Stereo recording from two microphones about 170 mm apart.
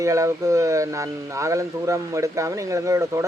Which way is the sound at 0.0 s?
20° right (ahead or behind).